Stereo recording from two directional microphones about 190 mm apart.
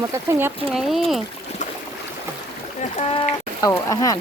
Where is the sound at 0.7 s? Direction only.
Centre (ahead or behind).